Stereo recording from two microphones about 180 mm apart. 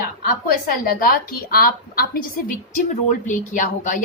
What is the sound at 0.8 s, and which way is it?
A woman's voice, 55° left (ahead or behind).